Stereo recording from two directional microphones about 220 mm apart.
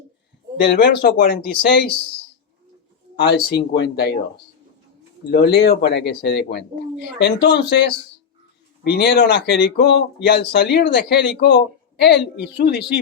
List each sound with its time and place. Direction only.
0.6 s speech: 45° left (ahead or behind)
3.2 s speech: 50° left (ahead or behind)
5.3 s speech: 50° left (ahead or behind)